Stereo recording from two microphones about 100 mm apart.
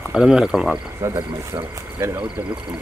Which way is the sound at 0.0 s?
5° right (ahead or behind).